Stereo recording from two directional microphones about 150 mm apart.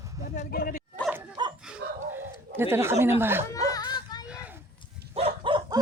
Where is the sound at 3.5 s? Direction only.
25° left (ahead or behind).